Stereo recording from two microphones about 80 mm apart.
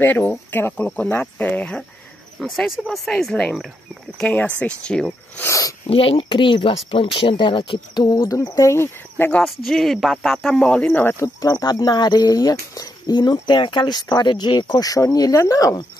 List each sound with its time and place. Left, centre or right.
0.0 s speech: left
2.3 s speech: centre
5.4 s speech: left
6.1 s speech: left
8.2 s speech: left
9.4 s speech: centre
10.9 s speech: left
11.4 s speech: left